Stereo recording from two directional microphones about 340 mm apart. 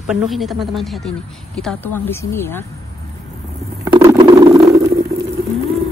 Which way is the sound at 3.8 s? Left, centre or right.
Centre.